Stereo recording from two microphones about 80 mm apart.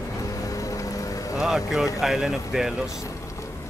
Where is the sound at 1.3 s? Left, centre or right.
Centre.